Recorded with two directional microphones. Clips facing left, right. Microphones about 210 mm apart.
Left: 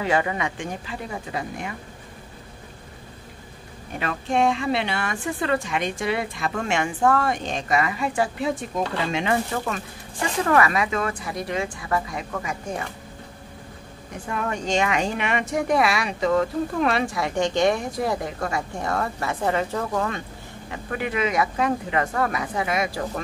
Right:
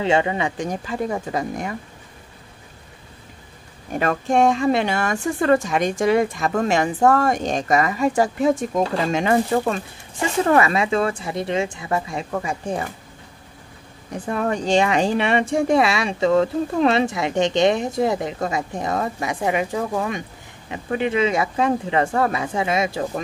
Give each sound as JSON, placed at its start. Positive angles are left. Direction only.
{"t": 0.0, "sound": "speech", "side_deg": -25}
{"t": 0.6, "sound": "speech", "side_deg": -40}
{"t": 4.0, "sound": "a woman's voice", "side_deg": -45}
{"t": 10.4, "sound": "speech", "side_deg": -25}
{"t": 14.1, "sound": "speech", "side_deg": -35}